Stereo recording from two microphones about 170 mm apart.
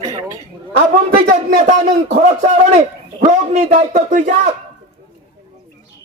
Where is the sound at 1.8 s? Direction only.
35° right (ahead or behind).